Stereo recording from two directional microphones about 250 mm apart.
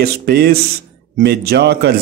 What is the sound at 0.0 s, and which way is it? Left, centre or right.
Speech, right.